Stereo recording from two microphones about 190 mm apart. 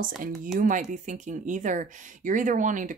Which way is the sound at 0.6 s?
45° right (ahead or behind).